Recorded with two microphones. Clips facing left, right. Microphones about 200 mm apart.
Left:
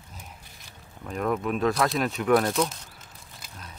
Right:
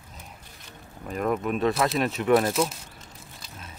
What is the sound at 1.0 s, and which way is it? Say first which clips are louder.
Speech: right 1 dB; 5° right (ahead or behind).